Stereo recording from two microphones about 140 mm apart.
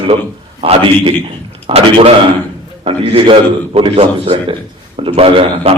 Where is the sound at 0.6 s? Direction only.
40° right (ahead or behind).